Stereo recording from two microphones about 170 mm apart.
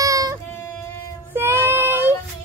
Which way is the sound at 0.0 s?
20° right (ahead or behind).